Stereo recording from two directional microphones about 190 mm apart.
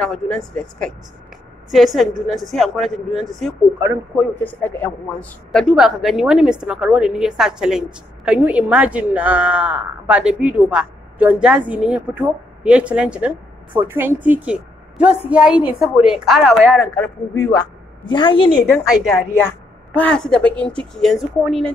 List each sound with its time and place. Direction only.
0.0 s a woman's voice: 5° left (ahead or behind)
17.5 s a woman's voice: 25° left (ahead or behind)
19.3 s speech: 10° left (ahead or behind)